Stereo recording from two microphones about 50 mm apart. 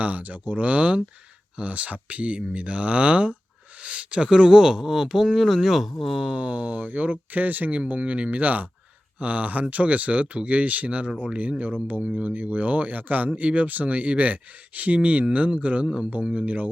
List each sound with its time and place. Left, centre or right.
0.0 s speech: right; by 6.2 s centre
6.2 s speech: right